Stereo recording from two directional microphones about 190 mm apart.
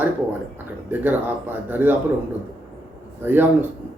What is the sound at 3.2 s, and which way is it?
Speech, 10° right (ahead or behind).